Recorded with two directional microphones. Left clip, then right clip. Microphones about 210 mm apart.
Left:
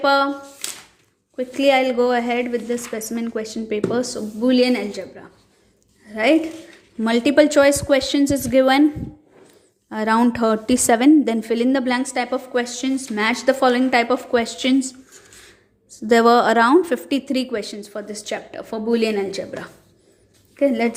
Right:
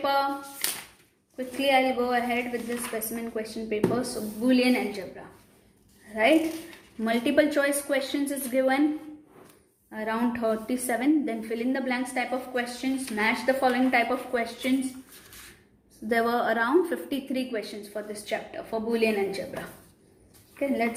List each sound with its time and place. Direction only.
0.0 s a woman's voice: 50° left (ahead or behind)
1.4 s a woman's voice: 55° left (ahead or behind)
7.0 s a woman's voice: 40° left (ahead or behind)
9.9 s a woman's voice: 50° left (ahead or behind)
16.0 s a woman's voice: 40° left (ahead or behind)
20.6 s a woman's voice: 50° left (ahead or behind)